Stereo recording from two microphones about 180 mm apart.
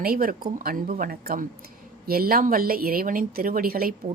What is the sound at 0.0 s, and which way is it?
Speech, 55° right (ahead or behind).